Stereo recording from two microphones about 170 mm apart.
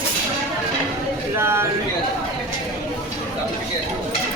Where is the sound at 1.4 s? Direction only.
15° right (ahead or behind).